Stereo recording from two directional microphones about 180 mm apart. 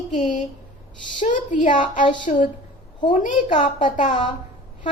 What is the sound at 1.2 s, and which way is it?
A woman's voice, 45° left (ahead or behind).